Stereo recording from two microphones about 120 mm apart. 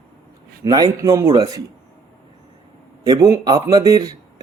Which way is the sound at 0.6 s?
30° right (ahead or behind).